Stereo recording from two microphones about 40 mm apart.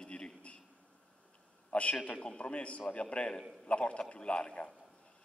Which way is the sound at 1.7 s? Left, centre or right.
Left.